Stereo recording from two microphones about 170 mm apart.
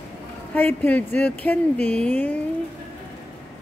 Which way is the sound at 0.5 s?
10° left (ahead or behind).